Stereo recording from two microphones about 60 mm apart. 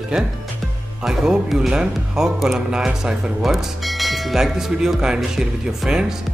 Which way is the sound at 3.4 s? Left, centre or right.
Centre.